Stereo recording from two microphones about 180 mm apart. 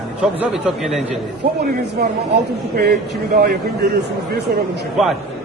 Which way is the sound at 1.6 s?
65° right (ahead or behind).